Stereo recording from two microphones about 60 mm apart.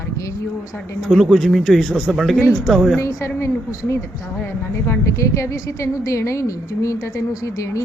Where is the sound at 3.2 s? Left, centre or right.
Left.